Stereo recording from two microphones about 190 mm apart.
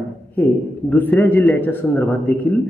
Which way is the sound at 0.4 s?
10° left (ahead or behind).